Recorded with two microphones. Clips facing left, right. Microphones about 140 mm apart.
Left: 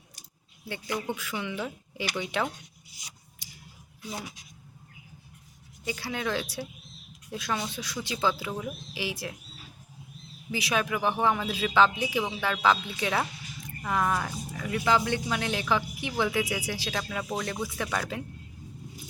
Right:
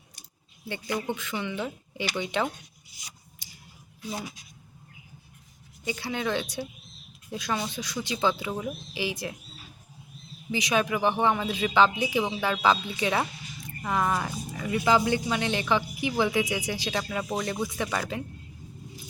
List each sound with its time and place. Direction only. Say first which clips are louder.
0.7 s speech: right 2 dB; centre (ahead or behind)
5.8 s speech: right 2 dB; centre (ahead or behind)
10.5 s speech: right 3 dB; centre (ahead or behind)